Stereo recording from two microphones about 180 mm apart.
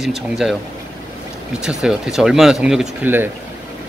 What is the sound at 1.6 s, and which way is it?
Speech, 5° right (ahead or behind).